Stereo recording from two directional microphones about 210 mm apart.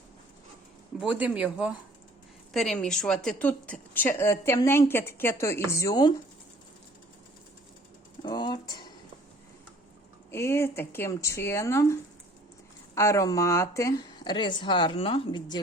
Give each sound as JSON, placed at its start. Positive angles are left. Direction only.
{"t": 0.9, "sound": "a woman's voice", "side_deg": -5}
{"t": 8.2, "sound": "speech", "side_deg": 20}
{"t": 10.3, "sound": "a woman's voice", "side_deg": 10}